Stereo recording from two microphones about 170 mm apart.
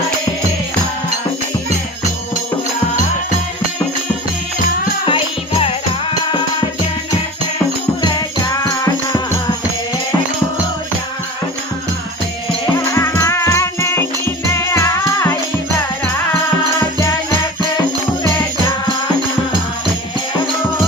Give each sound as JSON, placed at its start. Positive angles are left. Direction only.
{"t": 5.0, "sound": "music", "side_deg": 35}
{"t": 12.7, "sound": "music", "side_deg": 15}